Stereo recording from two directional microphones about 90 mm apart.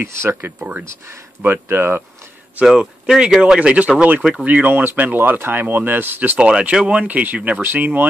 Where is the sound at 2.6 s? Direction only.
5° right (ahead or behind).